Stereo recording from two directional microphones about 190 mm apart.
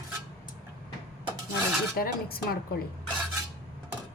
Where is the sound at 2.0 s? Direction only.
50° left (ahead or behind).